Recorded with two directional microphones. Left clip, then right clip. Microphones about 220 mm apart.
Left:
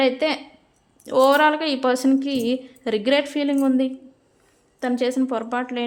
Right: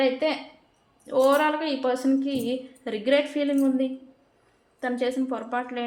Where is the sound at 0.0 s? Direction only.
50° left (ahead or behind).